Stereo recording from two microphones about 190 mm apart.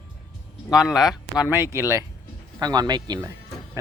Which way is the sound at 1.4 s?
15° right (ahead or behind).